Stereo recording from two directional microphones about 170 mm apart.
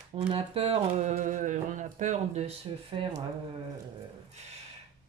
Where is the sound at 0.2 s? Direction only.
35° right (ahead or behind).